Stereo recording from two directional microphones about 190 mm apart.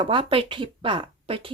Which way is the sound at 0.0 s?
25° right (ahead or behind).